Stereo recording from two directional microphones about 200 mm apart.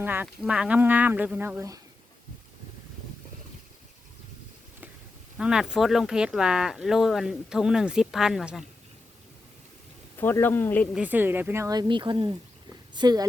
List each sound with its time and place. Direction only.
0.0 s speech: 10° right (ahead or behind)
5.4 s speech: 5° right (ahead or behind)
10.2 s a man's voice: 10° left (ahead or behind)
10.9 s speech: 10° right (ahead or behind)